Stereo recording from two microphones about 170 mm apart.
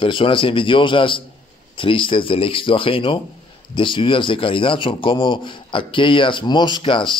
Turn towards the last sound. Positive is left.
turn(degrees=30)  # may be behind; listen again after turning